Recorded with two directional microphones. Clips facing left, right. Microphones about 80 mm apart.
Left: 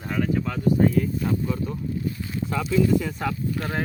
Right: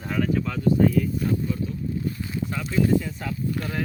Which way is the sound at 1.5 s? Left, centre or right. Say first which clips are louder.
Left 1 dB; left.